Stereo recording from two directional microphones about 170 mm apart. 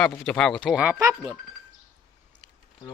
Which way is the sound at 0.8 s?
15° right (ahead or behind).